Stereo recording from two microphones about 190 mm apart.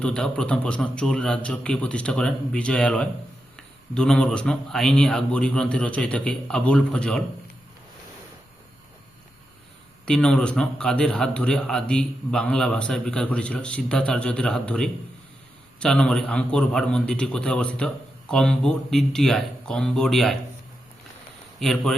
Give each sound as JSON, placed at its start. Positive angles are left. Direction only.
{"t": 0.0, "sound": "a man's voice", "side_deg": 5}
{"t": 10.1, "sound": "a man's voice", "side_deg": 5}
{"t": 21.6, "sound": "a man's voice", "side_deg": 0}